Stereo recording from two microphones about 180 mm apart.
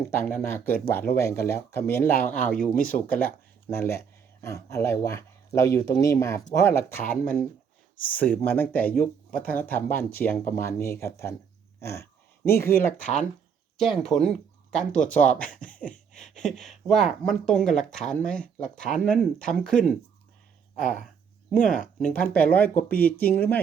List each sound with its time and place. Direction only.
0.1 s speech: 10° left (ahead or behind)
2.6 s speech: 50° left (ahead or behind)
3.7 s speech: 15° left (ahead or behind)
7.0 s speech: 50° left (ahead or behind)
8.0 s speech: 10° left (ahead or behind)
9.0 s speech: 50° left (ahead or behind)
9.5 s speech: 10° left (ahead or behind)
13.0 s speech: 45° left (ahead or behind)
13.7 s speech: centre (ahead or behind)
15.4 s speech: 50° left (ahead or behind)
16.3 s speech: centre (ahead or behind)
20.8 s speech: 45° left (ahead or behind)
22.0 s speech: 10° left (ahead or behind)